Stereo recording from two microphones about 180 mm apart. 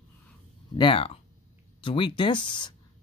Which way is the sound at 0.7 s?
30° left (ahead or behind).